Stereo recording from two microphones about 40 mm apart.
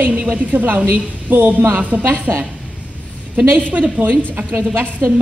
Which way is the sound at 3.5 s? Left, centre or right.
Right.